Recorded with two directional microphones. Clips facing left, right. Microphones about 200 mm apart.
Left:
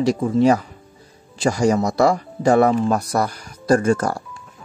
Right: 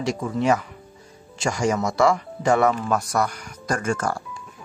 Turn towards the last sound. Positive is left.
turn(degrees=35)  # may be behind; listen again after turning